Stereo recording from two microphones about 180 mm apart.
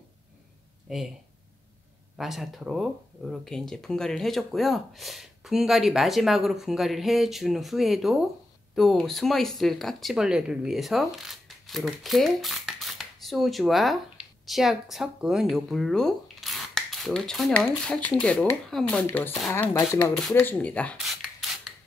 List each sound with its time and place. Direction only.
0.9 s speech: centre (ahead or behind)
2.1 s speech: centre (ahead or behind)